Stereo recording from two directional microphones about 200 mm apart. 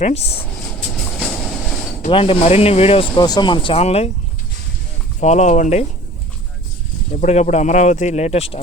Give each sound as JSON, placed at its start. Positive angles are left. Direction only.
{"t": 0.0, "sound": "speech", "side_deg": 30}
{"t": 2.0, "sound": "speech", "side_deg": 25}
{"t": 5.2, "sound": "speech", "side_deg": 35}
{"t": 7.2, "sound": "speech", "side_deg": 40}